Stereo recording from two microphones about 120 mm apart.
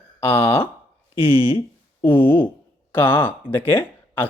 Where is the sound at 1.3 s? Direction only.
50° left (ahead or behind).